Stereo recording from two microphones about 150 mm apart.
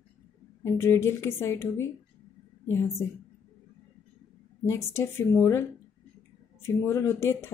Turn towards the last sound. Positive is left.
turn(degrees=15)  # may be behind; listen again after turning